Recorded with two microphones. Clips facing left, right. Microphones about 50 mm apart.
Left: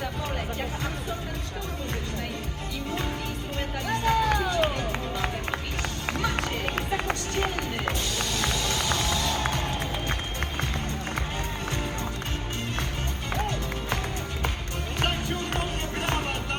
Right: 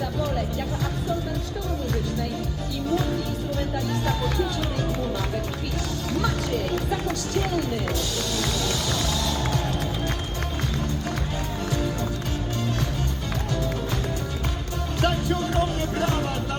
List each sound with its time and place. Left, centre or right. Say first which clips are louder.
3.8 s music: left 3 dB; left
6.1 s run: right 3 dB; left
8.4 s music: right 1 dB; left
15.0 s music: right 5 dB; left